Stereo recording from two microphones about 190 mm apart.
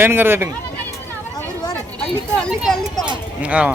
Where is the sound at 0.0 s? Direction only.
10° right (ahead or behind).